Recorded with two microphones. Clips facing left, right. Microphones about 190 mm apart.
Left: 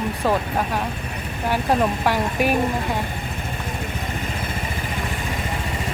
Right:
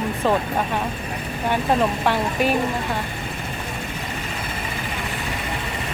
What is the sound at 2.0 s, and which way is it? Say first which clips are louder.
Speech: even; 10° left (ahead or behind).